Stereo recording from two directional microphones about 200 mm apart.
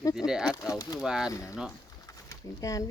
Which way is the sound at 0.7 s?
20° left (ahead or behind).